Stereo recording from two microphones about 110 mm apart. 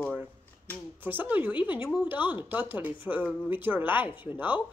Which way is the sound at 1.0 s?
15° right (ahead or behind).